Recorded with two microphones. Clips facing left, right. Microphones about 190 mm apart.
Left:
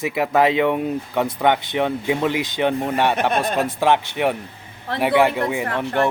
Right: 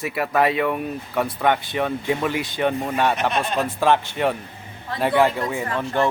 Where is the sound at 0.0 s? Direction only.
20° left (ahead or behind).